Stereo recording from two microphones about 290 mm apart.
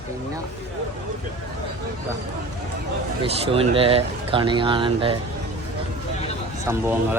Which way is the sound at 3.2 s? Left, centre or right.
Centre.